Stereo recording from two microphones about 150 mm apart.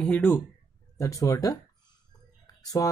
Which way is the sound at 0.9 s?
20° left (ahead or behind).